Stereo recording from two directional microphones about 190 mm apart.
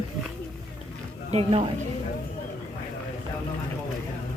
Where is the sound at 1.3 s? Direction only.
30° right (ahead or behind).